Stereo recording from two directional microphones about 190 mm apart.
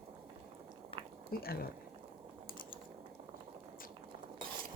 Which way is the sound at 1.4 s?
55° left (ahead or behind).